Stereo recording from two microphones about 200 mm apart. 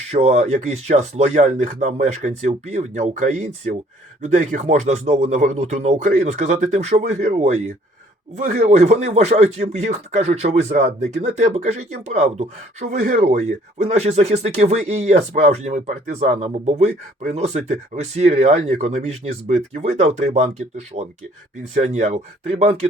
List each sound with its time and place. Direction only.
0.1 s speech: 35° right (ahead or behind)